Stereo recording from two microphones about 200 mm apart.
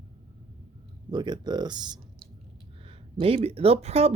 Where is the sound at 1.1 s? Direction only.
20° right (ahead or behind).